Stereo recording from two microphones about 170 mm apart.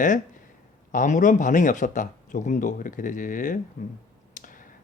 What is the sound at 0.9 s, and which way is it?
Speech, 50° left (ahead or behind).